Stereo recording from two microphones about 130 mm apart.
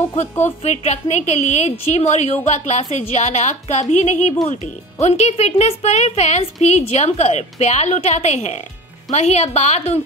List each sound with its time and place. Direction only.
0.2 s a woman's voice: 60° left (ahead or behind)